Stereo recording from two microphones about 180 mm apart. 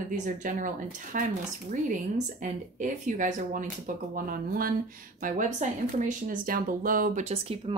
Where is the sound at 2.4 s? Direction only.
45° right (ahead or behind).